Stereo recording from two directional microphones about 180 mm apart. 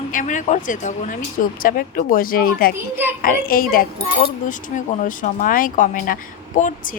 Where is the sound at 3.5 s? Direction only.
55° left (ahead or behind).